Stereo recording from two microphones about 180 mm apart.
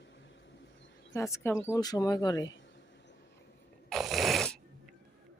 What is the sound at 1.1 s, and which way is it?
Speech, 15° left (ahead or behind).